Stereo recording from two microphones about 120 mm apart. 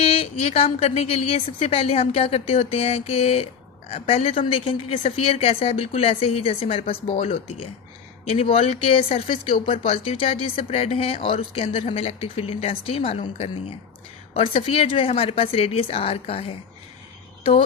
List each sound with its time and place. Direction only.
0.0 s a woman's voice: 55° left (ahead or behind)